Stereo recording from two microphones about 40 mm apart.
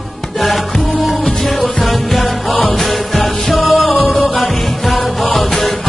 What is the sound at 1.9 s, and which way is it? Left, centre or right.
Music, centre.